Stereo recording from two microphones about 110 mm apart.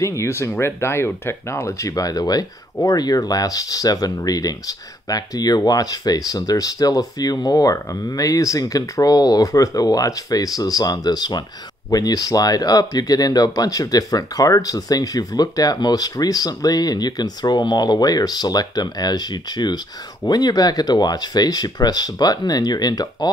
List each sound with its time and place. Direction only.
0.0 s speech: 25° left (ahead or behind)